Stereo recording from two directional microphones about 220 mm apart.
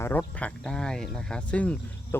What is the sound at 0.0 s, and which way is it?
Speech, 10° left (ahead or behind).